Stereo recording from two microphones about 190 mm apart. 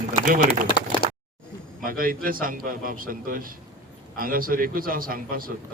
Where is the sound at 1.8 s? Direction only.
50° right (ahead or behind).